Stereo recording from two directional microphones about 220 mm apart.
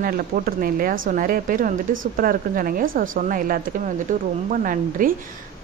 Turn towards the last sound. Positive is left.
turn(degrees=-35)  # may be behind; listen again after turning